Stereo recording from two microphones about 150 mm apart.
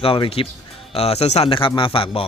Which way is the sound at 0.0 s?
40° left (ahead or behind).